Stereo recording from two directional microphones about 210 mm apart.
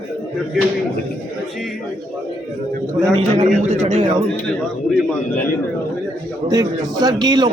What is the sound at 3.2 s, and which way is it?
Speech, 30° right (ahead or behind).